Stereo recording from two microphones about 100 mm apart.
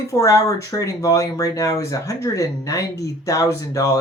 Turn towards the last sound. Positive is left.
turn(degrees=35)  # may be behind; listen again after turning